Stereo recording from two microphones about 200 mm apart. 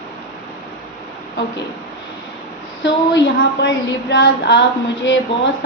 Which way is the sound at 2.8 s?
65° left (ahead or behind).